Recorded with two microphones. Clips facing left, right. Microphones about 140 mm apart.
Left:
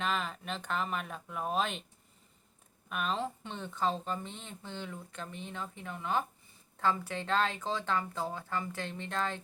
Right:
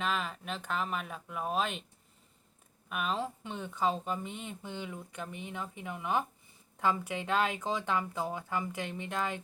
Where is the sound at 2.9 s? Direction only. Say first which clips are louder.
Even; 5° right (ahead or behind).